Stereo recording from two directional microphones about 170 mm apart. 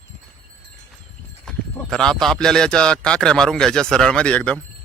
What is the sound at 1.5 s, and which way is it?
Speech, 5° left (ahead or behind).